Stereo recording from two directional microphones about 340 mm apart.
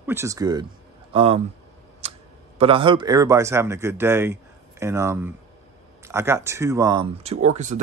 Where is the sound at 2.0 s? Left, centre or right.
Centre.